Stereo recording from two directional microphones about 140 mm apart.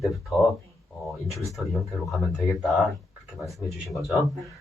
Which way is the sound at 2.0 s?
Centre (ahead or behind).